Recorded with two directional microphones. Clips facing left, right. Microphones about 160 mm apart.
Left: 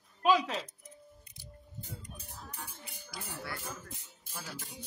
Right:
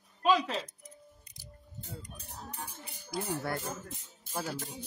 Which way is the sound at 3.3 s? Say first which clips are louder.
Right 5 dB; 45° right (ahead or behind).